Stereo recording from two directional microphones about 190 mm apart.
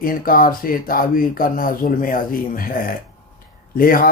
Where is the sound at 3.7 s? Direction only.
50° left (ahead or behind).